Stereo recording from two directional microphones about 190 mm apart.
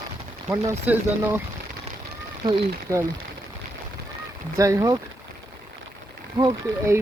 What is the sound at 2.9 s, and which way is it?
Speech, 15° right (ahead or behind).